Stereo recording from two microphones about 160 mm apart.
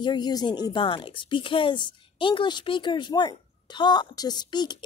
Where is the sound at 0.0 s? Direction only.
25° left (ahead or behind).